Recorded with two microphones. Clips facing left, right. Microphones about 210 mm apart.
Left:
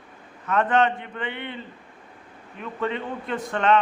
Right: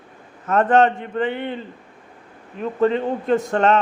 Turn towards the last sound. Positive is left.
turn(degrees=-45)  # may be behind; listen again after turning